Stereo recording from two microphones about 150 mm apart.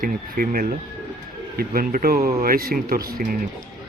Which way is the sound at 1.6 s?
85° right.